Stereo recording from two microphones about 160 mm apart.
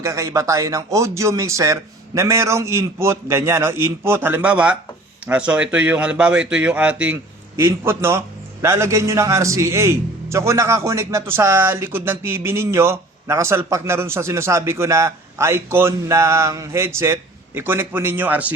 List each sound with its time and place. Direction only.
0.0 s a man's voice: 20° right (ahead or behind)